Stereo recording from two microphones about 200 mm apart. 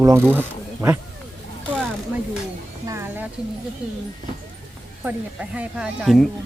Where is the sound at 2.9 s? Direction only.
10° right (ahead or behind).